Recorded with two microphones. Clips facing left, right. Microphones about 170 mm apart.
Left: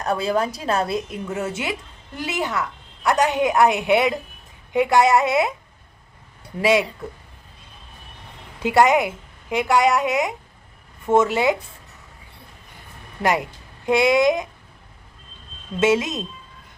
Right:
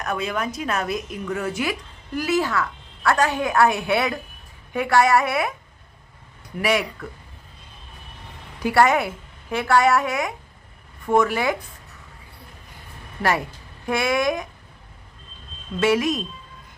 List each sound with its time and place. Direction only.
0.0 s a woman's voice: 30° left (ahead or behind)
8.6 s a woman's voice: 20° left (ahead or behind)
13.8 s a woman's voice: 20° left (ahead or behind)
15.8 s a woman's voice: 20° left (ahead or behind)